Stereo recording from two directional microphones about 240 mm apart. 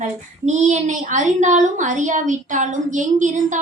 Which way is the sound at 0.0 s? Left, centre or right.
Right.